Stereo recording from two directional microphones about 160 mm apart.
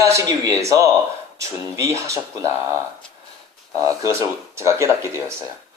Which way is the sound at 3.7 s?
20° right (ahead or behind).